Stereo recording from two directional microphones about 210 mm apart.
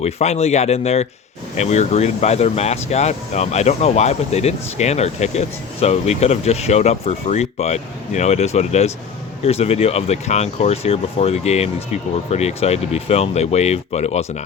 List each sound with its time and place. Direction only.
0.0 s speech: 30° left (ahead or behind)